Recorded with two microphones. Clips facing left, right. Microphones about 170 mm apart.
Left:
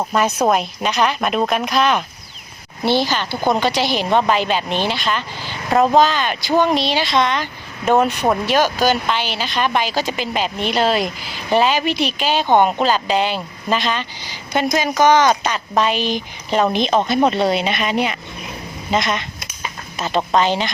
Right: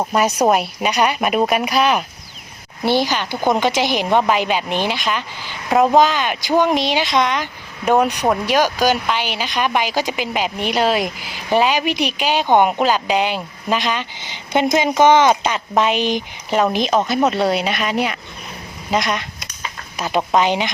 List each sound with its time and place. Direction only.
0.0 s speech: 10° right (ahead or behind)